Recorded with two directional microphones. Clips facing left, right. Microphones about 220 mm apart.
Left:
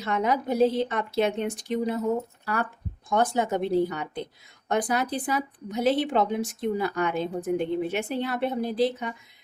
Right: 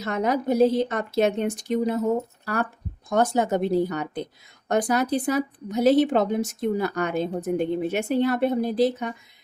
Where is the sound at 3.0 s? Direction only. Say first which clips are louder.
Right 3 dB; 40° right (ahead or behind).